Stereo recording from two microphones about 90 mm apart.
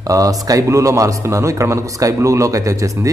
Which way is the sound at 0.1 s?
40° right (ahead or behind).